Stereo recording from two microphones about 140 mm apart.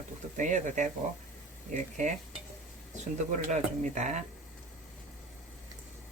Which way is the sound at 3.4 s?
60° right (ahead or behind).